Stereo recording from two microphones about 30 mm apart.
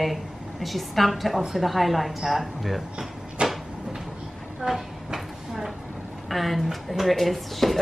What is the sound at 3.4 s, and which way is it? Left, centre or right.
Cupboard open or close, right.